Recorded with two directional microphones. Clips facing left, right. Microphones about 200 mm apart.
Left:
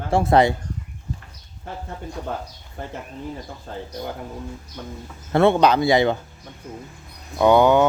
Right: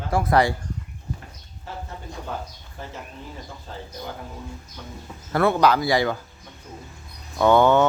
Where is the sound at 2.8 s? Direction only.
55° left (ahead or behind).